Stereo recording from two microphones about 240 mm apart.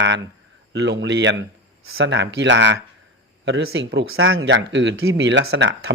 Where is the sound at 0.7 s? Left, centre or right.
Right.